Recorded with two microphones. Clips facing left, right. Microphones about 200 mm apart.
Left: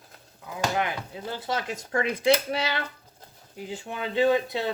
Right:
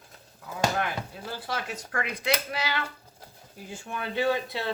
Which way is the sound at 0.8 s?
20° left (ahead or behind).